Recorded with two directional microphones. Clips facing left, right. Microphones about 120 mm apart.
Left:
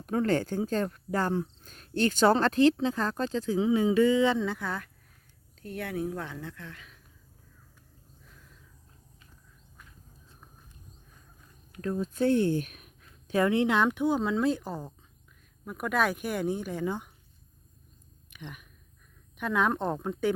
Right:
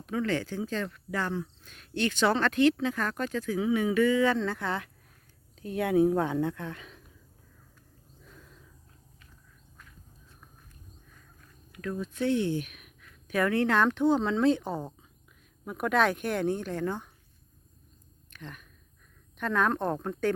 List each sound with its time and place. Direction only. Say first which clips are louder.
0.0 s speech: left 3 dB; 45° left (ahead or behind); by 4.9 s centre (ahead or behind)
5.5 s speech: right 9 dB; 15° right (ahead or behind)
6.5 s speech: right 8 dB; 55° right (ahead or behind)
6.7 s speech: right 5 dB; 30° right (ahead or behind)
11.7 s speech: left 3 dB; 35° left (ahead or behind); by 17.1 s 15° left (ahead or behind)
18.3 s a sound: even; 15° left (ahead or behind)
19.4 s speech: even; 10° left (ahead or behind)